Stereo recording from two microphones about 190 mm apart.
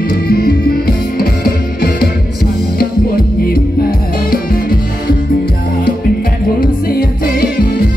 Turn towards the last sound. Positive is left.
turn(degrees=50)  # may be behind; listen again after turning